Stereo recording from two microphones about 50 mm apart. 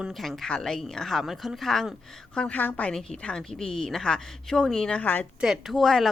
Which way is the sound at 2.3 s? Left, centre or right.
Left.